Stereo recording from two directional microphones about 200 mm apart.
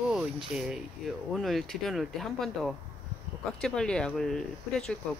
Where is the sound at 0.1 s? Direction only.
5° right (ahead or behind).